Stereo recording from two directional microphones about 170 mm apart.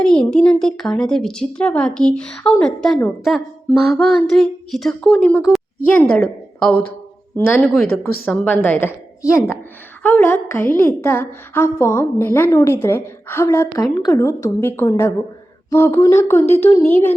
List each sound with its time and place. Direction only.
0.0 s a woman's voice: 5° left (ahead or behind)